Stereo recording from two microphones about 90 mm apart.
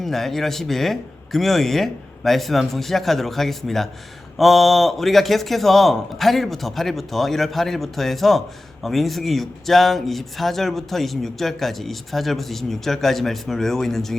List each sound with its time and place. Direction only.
0.0 s speech: 5° left (ahead or behind)